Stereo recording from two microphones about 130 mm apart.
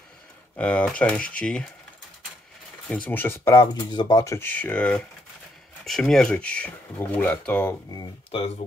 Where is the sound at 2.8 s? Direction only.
10° left (ahead or behind); by 4.4 s 25° left (ahead or behind).